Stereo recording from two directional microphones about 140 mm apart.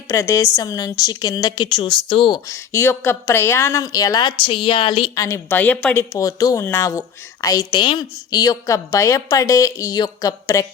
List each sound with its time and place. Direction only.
0.1 s a woman's voice: 20° left (ahead or behind)
2.5 s a woman's voice: 20° left (ahead or behind)
5.2 s a woman's voice: 20° left (ahead or behind)